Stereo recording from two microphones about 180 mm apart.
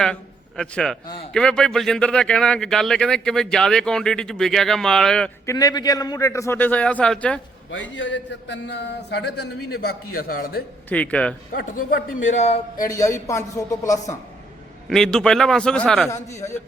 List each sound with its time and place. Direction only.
0.0 s a man's voice: 5° left (ahead or behind)
1.0 s speech: 30° left (ahead or behind)
1.3 s speech: 5° left (ahead or behind)
5.5 s a man's voice: 20° left (ahead or behind)
7.7 s a man's voice: 90° left; by 10.6 s 55° left (ahead or behind)
10.8 s a man's voice: 10° left (ahead or behind)
11.5 s a man's voice: 50° left (ahead or behind)
12.2 s a man's voice: 40° left (ahead or behind)
12.9 s a man's voice: 15° left (ahead or behind)
14.8 s speech: 5° left (ahead or behind)
16.0 s a man's voice: 15° left (ahead or behind)